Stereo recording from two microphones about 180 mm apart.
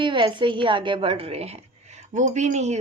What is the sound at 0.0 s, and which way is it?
A woman's voice, 25° right (ahead or behind).